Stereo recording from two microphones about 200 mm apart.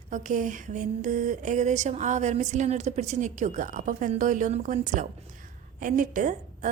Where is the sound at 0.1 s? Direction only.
40° right (ahead or behind).